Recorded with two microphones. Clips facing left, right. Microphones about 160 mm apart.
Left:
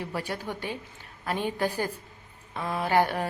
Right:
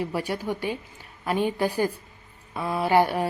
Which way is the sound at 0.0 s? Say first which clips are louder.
Right 5 dB; 15° right (ahead or behind).